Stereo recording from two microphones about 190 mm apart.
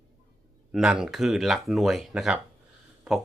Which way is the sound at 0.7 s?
5° right (ahead or behind).